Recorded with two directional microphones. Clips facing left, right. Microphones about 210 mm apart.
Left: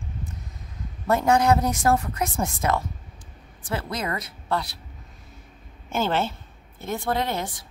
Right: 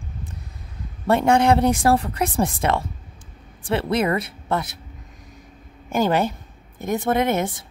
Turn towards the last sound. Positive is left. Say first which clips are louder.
# right 6 dB
turn(degrees=-20)  # may be behind; listen again after turning